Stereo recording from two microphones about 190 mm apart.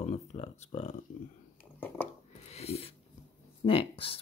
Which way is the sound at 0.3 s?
35° left (ahead or behind).